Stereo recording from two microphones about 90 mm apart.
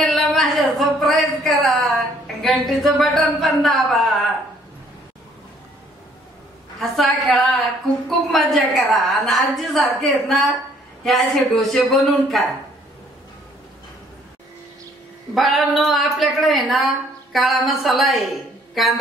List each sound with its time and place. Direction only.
0.0 s a sound: centre (ahead or behind)
2.4 s a woman's voice: centre (ahead or behind)
6.8 s a woman's voice: 5° left (ahead or behind)
15.3 s a woman's voice: centre (ahead or behind)